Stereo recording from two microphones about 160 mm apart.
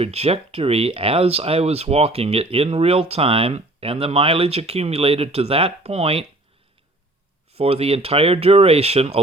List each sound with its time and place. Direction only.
0.0 s speech: 40° right (ahead or behind)
7.6 s speech: 40° right (ahead or behind)